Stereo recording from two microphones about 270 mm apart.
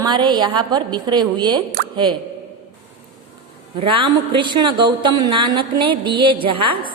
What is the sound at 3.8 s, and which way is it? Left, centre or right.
A woman's voice, centre.